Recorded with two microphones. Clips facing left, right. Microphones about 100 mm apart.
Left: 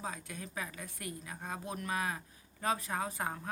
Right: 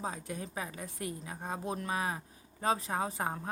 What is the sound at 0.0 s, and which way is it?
A woman's voice, 25° right (ahead or behind).